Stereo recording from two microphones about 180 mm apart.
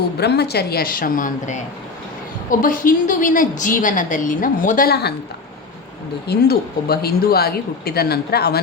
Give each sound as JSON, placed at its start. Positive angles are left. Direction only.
{"t": 0.2, "sound": "a woman's voice", "side_deg": 65}
{"t": 6.2, "sound": "speech", "side_deg": 60}